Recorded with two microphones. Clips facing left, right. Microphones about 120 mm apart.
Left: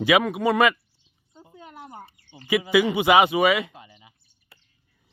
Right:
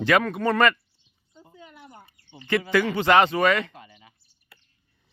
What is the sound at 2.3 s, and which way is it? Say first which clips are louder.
Speech: left 2 dB; 15° left (ahead or behind).